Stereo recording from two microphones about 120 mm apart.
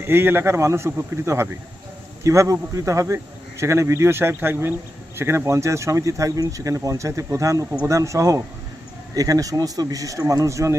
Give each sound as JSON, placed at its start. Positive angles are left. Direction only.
{"t": 0.0, "sound": "speech", "side_deg": -20}